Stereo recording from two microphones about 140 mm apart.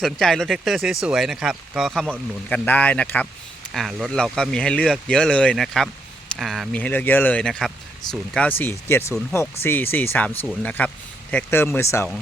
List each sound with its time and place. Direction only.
0.0 s speech: centre (ahead or behind)
2.5 s speech: 10° left (ahead or behind)
3.7 s speech: centre (ahead or behind)
6.7 s speech: 10° left (ahead or behind)